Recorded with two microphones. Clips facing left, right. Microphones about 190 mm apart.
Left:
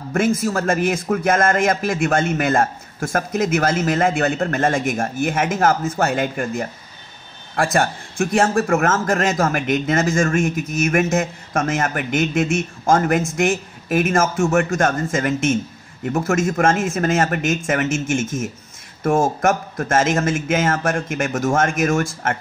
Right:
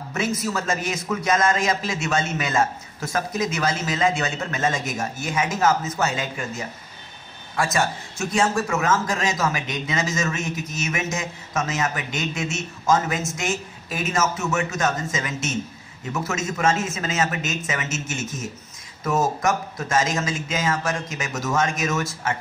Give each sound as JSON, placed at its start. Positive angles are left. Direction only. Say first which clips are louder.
{"t": 0.1, "sound": "a man's voice", "louder": "left 7 dB", "side_deg": 50}